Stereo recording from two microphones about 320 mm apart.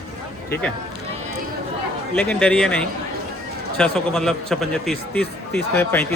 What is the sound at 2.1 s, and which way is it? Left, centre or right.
A man's voice, centre.